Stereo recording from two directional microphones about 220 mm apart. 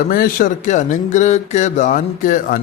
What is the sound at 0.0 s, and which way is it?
A man's voice, 40° left (ahead or behind).